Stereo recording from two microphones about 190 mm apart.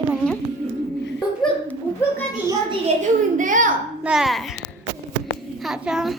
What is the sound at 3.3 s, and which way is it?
Speech, 45° right (ahead or behind).